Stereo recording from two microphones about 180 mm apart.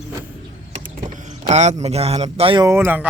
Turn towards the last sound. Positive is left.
turn(degrees=-10)  # may be behind; listen again after turning